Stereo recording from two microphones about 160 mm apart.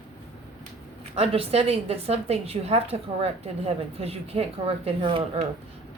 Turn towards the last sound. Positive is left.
turn(degrees=-35)  # may be behind; listen again after turning